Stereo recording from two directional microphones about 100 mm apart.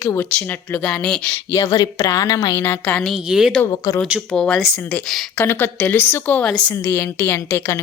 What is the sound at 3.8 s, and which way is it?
Speech, 40° left (ahead or behind).